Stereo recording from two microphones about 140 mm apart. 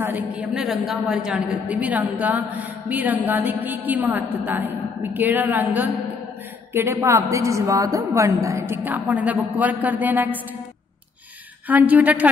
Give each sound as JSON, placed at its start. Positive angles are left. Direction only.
{"t": 0.0, "sound": "a woman's voice", "side_deg": -10}
{"t": 6.7, "sound": "a woman's voice", "side_deg": -15}
{"t": 11.6, "sound": "a woman's voice", "side_deg": -10}